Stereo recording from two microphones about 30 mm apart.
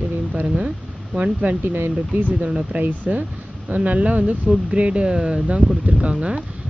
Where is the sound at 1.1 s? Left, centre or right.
Right.